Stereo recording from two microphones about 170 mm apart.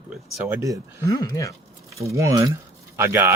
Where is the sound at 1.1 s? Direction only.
20° left (ahead or behind).